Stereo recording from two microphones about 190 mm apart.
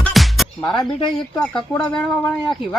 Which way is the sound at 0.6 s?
25° left (ahead or behind).